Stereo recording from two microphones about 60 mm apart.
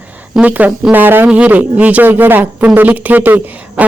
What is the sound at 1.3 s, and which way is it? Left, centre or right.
Speech, right.